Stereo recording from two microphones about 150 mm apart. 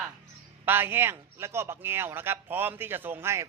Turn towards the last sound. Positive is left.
turn(degrees=-15)  # may be behind; listen again after turning